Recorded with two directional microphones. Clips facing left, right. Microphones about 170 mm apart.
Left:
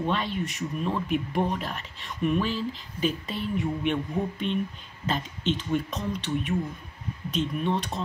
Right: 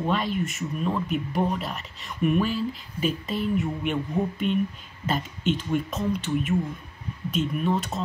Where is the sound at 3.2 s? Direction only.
45° right (ahead or behind).